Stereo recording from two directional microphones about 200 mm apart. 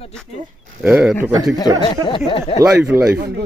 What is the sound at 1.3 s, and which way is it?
Speech, 20° right (ahead or behind).